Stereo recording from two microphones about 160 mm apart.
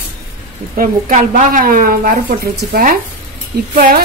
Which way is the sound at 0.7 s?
55° right (ahead or behind).